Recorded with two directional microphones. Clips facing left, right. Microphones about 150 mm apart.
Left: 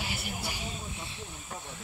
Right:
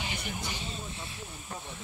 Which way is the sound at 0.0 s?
5° left (ahead or behind).